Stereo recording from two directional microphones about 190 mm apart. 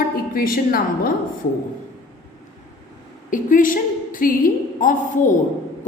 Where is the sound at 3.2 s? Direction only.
45° left (ahead or behind).